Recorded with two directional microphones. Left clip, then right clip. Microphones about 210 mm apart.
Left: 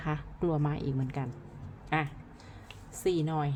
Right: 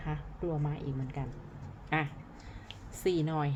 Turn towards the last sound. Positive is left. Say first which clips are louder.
# left 1 dB
turn(degrees=0)  # may be behind; listen again after turning